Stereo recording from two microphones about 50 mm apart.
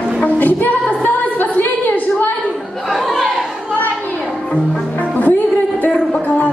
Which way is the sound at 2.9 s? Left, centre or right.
Centre.